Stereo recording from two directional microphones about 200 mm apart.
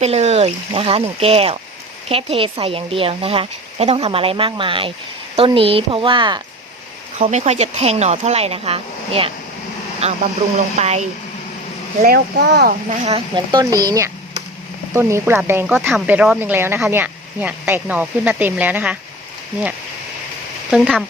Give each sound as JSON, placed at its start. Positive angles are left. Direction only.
{"t": 0.0, "sound": "speech", "side_deg": -30}
{"t": 7.2, "sound": "speech", "side_deg": -35}
{"t": 12.0, "sound": "speech", "side_deg": -50}
{"t": 12.9, "sound": "speech", "side_deg": -30}
{"t": 20.7, "sound": "speech", "side_deg": 0}